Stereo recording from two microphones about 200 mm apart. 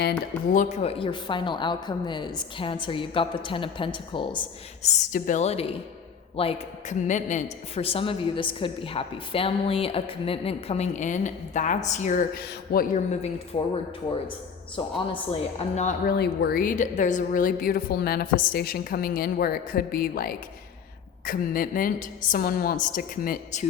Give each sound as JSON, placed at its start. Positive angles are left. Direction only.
{"t": 0.5, "sound": "speech", "side_deg": 35}
{"t": 14.8, "sound": "speech", "side_deg": 25}
{"t": 16.0, "sound": "a woman's voice", "side_deg": 55}